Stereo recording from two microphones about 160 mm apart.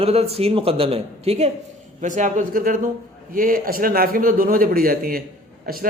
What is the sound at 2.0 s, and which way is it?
A man's voice, 50° right (ahead or behind).